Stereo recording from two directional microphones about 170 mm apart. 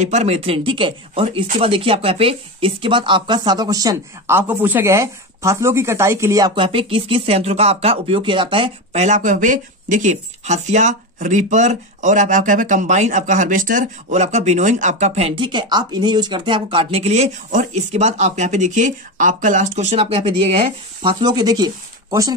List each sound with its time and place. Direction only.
0.0 s speech: 40° right (ahead or behind); by 22.3 s 20° right (ahead or behind)